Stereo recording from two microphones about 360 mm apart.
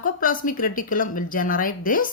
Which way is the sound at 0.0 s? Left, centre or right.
Left.